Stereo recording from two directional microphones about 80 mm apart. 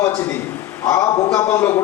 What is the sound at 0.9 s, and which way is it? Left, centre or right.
Speech, left.